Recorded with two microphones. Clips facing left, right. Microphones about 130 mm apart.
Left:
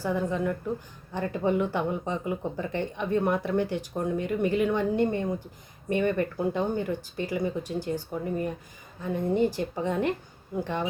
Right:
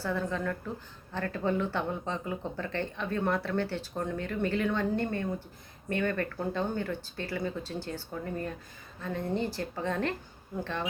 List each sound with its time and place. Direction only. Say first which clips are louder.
0.0 s speech: left 4 dB; 15° left (ahead or behind)